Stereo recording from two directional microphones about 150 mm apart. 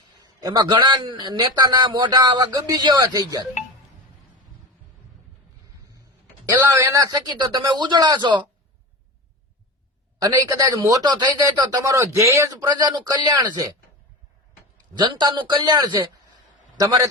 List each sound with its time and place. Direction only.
0.2 s a man's voice: 25° right (ahead or behind)
6.4 s a man's voice: 20° right (ahead or behind)
10.2 s a man's voice: 25° right (ahead or behind)
14.9 s a man's voice: 30° right (ahead or behind)